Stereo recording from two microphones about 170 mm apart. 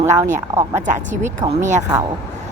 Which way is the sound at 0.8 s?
50° right (ahead or behind).